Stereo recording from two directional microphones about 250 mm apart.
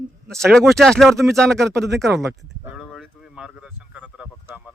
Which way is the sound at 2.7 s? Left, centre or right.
Centre.